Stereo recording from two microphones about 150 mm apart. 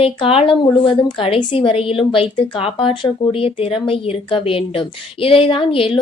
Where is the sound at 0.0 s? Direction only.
40° left (ahead or behind).